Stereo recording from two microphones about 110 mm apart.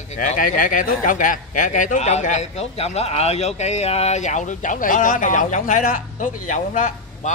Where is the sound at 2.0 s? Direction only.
90° left.